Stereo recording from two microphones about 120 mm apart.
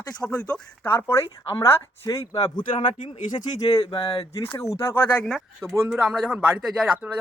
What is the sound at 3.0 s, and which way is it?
Speech, 90° left.